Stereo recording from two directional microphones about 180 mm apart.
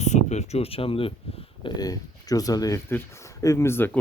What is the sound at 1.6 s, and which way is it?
Speech, 20° left (ahead or behind).